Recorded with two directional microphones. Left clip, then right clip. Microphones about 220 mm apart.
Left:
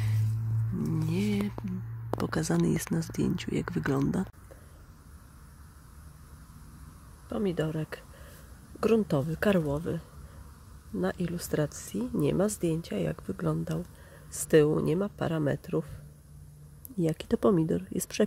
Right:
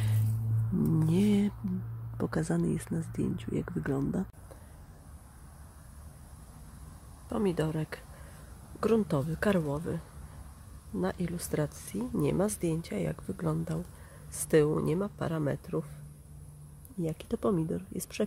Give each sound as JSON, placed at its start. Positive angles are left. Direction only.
{"t": 0.8, "sound": "a sound", "side_deg": -10}
{"t": 2.1, "sound": "speech", "side_deg": 0}
{"t": 7.2, "sound": "speech", "side_deg": 0}
{"t": 17.0, "sound": "speech", "side_deg": 20}